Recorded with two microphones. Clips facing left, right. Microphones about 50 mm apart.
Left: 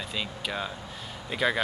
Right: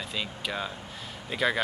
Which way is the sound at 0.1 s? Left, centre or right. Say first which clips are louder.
Even; centre.